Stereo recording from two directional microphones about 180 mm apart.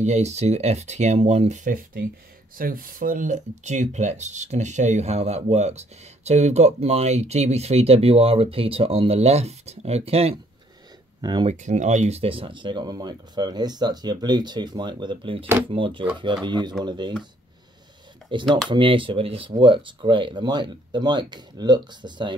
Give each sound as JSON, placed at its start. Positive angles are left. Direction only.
{"t": 0.0, "sound": "speech", "side_deg": -40}
{"t": 11.1, "sound": "speech", "side_deg": -25}
{"t": 11.4, "sound": "speech", "side_deg": -40}
{"t": 18.5, "sound": "speech", "side_deg": -25}